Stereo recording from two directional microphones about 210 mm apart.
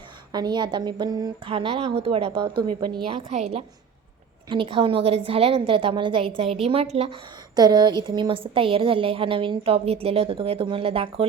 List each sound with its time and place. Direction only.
0.3 s a woman's voice: 20° right (ahead or behind)
7.5 s a woman's voice: 20° right (ahead or behind)